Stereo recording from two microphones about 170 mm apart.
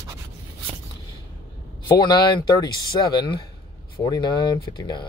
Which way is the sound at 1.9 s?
25° left (ahead or behind).